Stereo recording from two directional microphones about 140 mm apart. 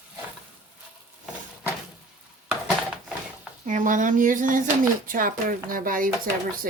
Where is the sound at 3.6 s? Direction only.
65° right (ahead or behind).